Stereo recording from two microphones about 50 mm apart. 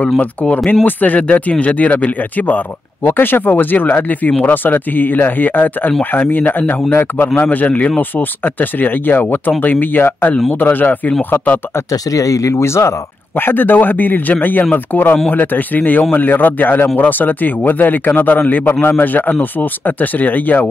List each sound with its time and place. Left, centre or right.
0.2 s speech: left
3.0 s speech: left
8.2 s speech: left
12.1 s speech: left
13.5 s speech: left